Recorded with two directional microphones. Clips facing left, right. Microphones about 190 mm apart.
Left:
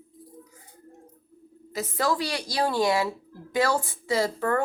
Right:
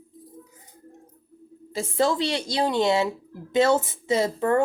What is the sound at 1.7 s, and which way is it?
Speech, 25° right (ahead or behind).